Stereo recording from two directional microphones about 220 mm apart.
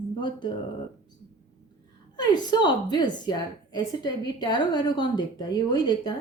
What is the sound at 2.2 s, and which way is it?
Speech, 20° left (ahead or behind).